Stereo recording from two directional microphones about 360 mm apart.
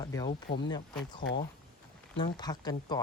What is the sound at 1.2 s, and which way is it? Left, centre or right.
Speech, left.